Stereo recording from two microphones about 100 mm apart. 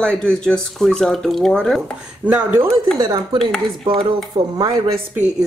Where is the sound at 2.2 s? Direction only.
15° right (ahead or behind).